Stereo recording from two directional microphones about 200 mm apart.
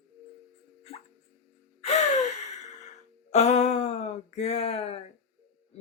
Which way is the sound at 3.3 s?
35° left (ahead or behind).